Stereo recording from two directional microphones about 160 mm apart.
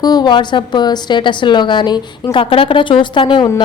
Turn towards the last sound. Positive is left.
turn(degrees=30)  # may be behind; listen again after turning